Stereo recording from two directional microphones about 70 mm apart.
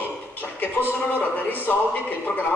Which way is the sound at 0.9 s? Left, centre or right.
Left.